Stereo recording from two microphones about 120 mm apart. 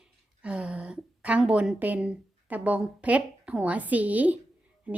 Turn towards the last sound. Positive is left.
turn(degrees=-10)  # may be behind; listen again after turning